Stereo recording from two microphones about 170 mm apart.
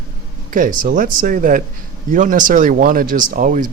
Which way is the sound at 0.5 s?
50° right (ahead or behind).